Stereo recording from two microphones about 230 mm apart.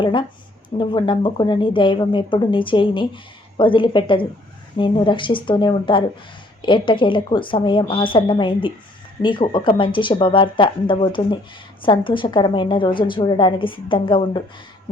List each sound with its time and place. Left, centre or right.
0.0 s a woman's voice: left